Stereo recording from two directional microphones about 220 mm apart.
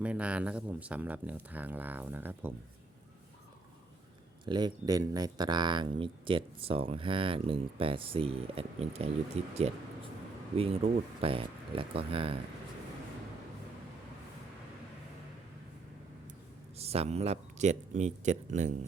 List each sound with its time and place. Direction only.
0.0 s speech: 5° right (ahead or behind)
4.4 s speech: 20° right (ahead or behind)
16.7 s speech: 30° right (ahead or behind)